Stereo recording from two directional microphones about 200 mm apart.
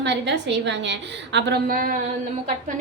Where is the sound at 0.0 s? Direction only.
60° right (ahead or behind).